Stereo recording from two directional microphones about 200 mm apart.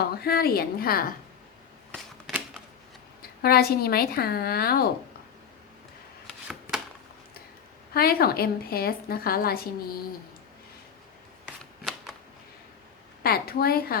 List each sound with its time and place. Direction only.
0.0 s a woman's voice: 50° left (ahead or behind)
3.2 s a woman's voice: 50° left (ahead or behind)
6.2 s shuffling cards: centre (ahead or behind)
7.9 s a woman's voice: 50° left (ahead or behind)
11.4 s shuffling cards: 5° right (ahead or behind)
13.2 s a woman's voice: 50° left (ahead or behind)